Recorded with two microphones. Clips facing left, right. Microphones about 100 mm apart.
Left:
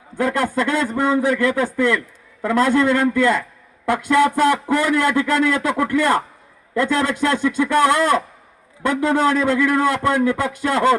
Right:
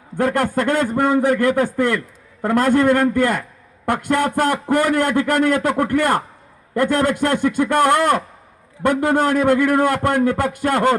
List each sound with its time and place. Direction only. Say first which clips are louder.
0.2 s speech: right 1 dB; 50° right (ahead or behind)